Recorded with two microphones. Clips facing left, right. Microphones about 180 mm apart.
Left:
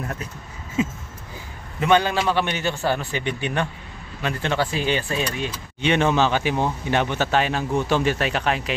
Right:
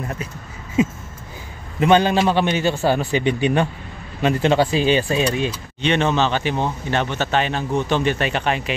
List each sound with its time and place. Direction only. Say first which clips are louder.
0.0 s speech: right 2 dB; 5° right (ahead or behind)
1.8 s speech: right 4 dB; 20° right (ahead or behind)
5.8 s speech: even; 10° left (ahead or behind)